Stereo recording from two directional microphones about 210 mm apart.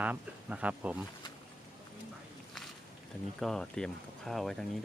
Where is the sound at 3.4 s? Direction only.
Centre (ahead or behind).